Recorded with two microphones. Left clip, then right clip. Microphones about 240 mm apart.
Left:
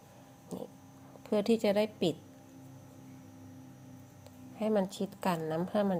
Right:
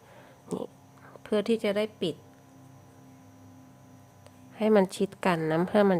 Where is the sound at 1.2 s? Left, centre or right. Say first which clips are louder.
Right 3 dB; centre.